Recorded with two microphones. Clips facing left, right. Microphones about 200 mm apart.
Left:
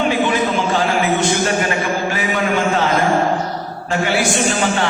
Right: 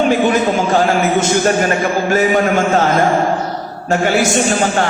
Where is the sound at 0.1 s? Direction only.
45° right (ahead or behind).